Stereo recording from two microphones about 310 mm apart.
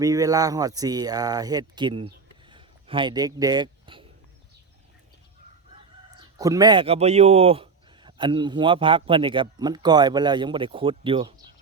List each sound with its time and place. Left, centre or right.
0.0 s a man's voice: centre
2.5 s a sound: centre
6.4 s a man's voice: centre